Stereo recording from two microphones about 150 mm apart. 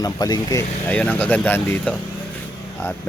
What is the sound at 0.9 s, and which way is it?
Speech, 10° left (ahead or behind).